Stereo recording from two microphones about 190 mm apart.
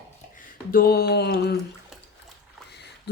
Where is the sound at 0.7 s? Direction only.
50° left (ahead or behind).